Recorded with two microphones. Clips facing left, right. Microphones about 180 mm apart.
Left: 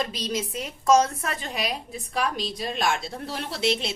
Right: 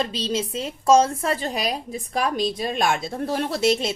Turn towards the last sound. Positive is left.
turn(degrees=-45)  # may be behind; listen again after turning